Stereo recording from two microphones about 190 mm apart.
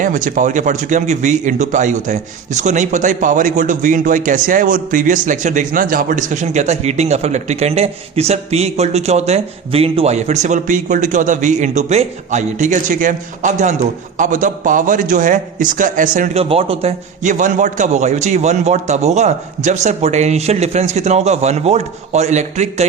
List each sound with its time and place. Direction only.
0.0 s a man's voice: 45° right (ahead or behind)
16.4 s speech: 30° right (ahead or behind)